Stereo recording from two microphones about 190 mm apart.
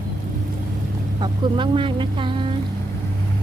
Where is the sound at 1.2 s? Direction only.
25° right (ahead or behind).